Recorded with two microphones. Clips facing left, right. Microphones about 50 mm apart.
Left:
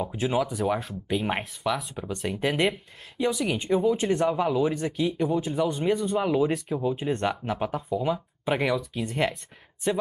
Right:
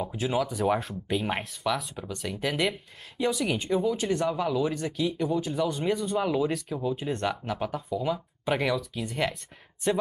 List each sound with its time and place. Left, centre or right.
0.0 s speech: centre
2.0 s speech: left
6.1 s speech: centre